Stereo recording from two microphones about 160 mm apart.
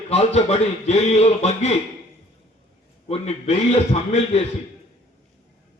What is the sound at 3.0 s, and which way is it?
A man's voice, 40° left (ahead or behind).